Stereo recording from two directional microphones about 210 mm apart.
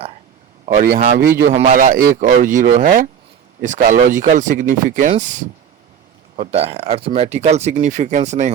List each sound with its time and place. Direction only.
0.6 s speech: 40° right (ahead or behind)